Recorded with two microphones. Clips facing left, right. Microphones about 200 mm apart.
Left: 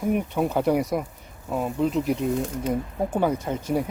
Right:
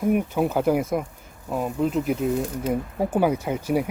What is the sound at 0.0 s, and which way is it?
Speech, 5° right (ahead or behind).